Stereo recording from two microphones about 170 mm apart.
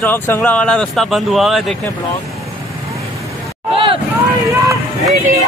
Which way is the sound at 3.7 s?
30° right (ahead or behind).